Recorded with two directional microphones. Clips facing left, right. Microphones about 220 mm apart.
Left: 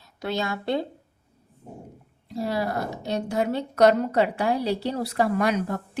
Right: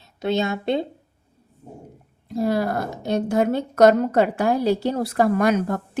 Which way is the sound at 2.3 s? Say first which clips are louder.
Right 5 dB; 50° right (ahead or behind).